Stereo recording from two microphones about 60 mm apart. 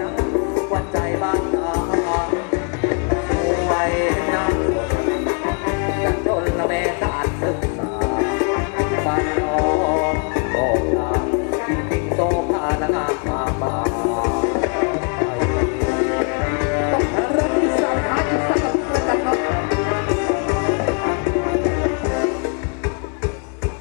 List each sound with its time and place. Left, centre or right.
0.2 s music: centre
8.0 s music: centre